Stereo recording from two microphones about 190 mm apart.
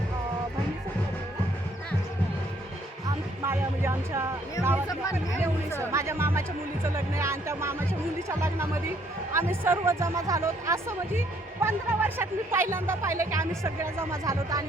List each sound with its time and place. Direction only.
3.4 s music: 10° right (ahead or behind)
5.1 s speech: 10° right (ahead or behind)